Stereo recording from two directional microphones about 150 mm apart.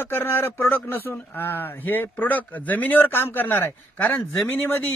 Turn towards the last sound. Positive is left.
turn(degrees=15)  # may be behind; listen again after turning